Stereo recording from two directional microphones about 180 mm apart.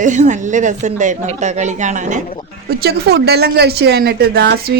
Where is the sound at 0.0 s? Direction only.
45° right (ahead or behind).